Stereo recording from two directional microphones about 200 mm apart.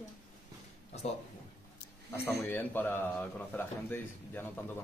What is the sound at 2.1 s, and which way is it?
A man's voice, 10° left (ahead or behind).